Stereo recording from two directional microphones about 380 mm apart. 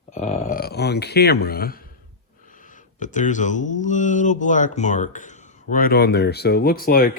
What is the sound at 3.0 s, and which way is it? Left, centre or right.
Speech, centre.